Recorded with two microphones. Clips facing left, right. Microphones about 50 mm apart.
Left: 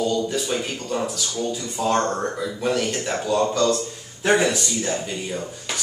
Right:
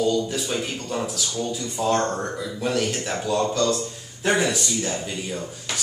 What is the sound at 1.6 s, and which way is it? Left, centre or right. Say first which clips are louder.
Speech: even; left.